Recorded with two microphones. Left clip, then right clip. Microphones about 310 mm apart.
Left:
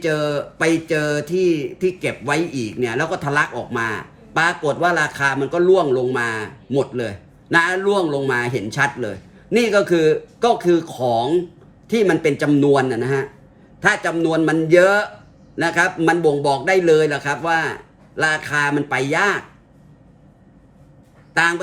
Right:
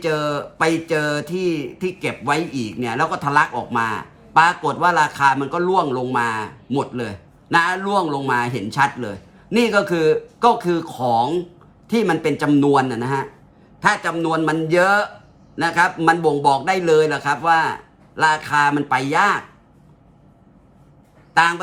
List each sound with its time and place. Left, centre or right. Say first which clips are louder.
0.3 s a man's voice: left 1 dB; right